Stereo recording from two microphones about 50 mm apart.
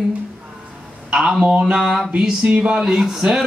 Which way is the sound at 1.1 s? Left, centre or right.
Centre.